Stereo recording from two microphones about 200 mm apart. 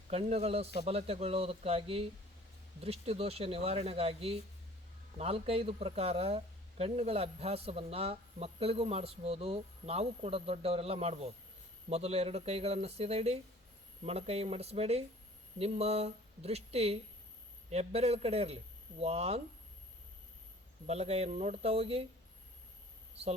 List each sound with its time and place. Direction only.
0.1 s a man's voice: 30° right (ahead or behind)
20.8 s a man's voice: 30° right (ahead or behind)